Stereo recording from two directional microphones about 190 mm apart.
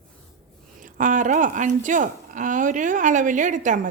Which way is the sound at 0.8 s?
45° right (ahead or behind).